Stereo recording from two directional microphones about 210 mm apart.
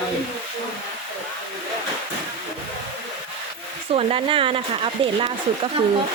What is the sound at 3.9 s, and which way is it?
Speech, 25° right (ahead or behind).